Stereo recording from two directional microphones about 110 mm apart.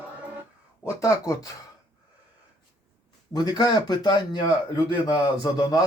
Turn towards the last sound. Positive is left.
turn(degrees=40)  # may be behind; listen again after turning